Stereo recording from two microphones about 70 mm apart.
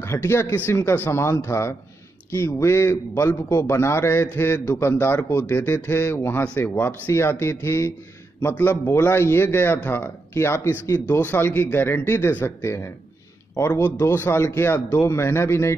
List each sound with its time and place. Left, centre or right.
0.0 s a man's voice: left
11.1 s speech: left
12.6 s a man's voice: left